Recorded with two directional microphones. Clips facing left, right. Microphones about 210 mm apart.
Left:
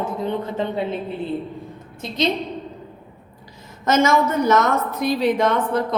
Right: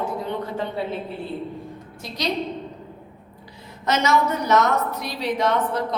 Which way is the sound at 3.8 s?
50° left (ahead or behind).